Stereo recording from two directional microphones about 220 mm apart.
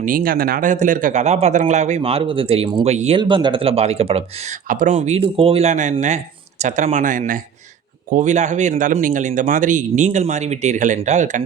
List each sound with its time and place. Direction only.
0.0 s speech: 40° right (ahead or behind)